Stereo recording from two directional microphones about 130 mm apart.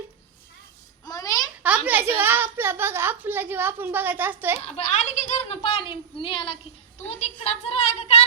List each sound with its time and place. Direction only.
1.0 s a sound: 30° left (ahead or behind)
1.6 s a woman's voice: 10° right (ahead or behind)
4.6 s speech: 55° left (ahead or behind)